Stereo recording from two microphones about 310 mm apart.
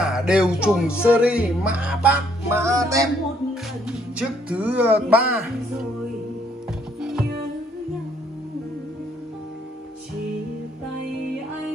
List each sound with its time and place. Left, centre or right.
0.0 s speech: centre
1.1 s music: centre
3.8 s speech: centre
7.0 s music: centre